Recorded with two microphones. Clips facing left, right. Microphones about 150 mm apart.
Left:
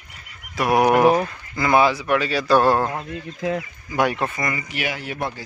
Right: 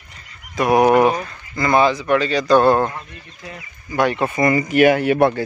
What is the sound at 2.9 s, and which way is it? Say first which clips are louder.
Speech: left 6 dB; 85° left.